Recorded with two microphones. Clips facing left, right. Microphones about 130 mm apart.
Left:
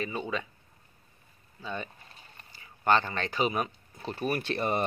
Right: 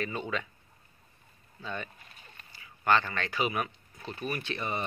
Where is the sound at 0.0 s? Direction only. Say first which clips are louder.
Left 1 dB; 15° left (ahead or behind).